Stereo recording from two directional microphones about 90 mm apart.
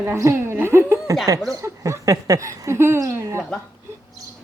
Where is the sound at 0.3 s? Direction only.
25° right (ahead or behind).